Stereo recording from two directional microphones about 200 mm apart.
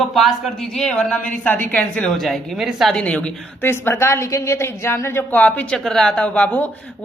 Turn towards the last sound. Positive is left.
turn(degrees=5)  # may be behind; listen again after turning